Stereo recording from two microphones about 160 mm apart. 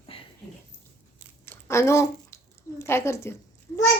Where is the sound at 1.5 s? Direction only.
15° left (ahead or behind).